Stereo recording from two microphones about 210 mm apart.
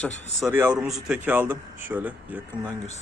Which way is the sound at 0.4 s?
10° right (ahead or behind).